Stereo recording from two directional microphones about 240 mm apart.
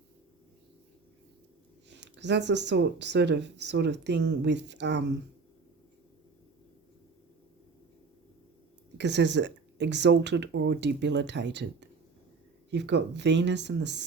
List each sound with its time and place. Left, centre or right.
1.9 s speech: right
9.0 s speech: right